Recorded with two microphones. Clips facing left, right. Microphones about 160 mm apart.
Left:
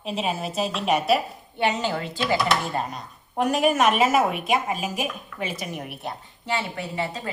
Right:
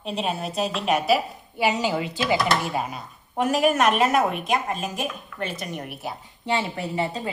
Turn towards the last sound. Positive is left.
turn(degrees=0)  # may be behind; listen again after turning